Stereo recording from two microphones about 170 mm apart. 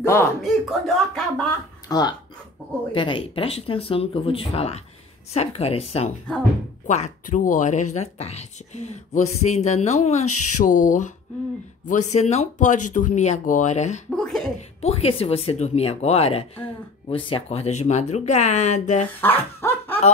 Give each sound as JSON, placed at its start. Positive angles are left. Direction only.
{"t": 0.0, "sound": "speech", "side_deg": 15}
{"t": 0.4, "sound": "speech", "side_deg": 0}
{"t": 1.9, "sound": "a woman's voice", "side_deg": 25}
{"t": 14.1, "sound": "speech", "side_deg": 5}
{"t": 14.8, "sound": "speech", "side_deg": 35}
{"t": 19.2, "sound": "dog", "side_deg": 10}